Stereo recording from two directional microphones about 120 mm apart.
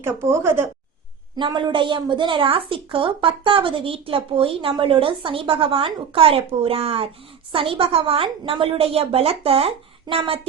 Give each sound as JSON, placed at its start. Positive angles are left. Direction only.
{"t": 0.0, "sound": "a woman's voice", "side_deg": -20}
{"t": 1.4, "sound": "a woman's voice", "side_deg": -40}